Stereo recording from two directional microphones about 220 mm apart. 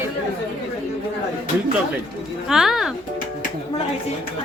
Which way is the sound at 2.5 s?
Centre (ahead or behind).